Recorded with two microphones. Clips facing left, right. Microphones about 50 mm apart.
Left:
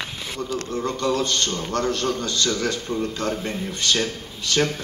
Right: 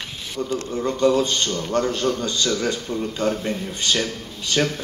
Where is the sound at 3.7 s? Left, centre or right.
Right.